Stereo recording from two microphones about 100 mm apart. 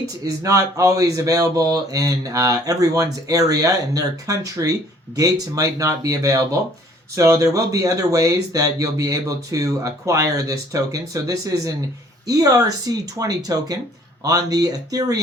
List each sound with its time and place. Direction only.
0.3 s speech: 35° right (ahead or behind)